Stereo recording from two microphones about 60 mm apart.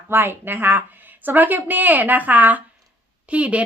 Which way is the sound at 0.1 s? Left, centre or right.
Right.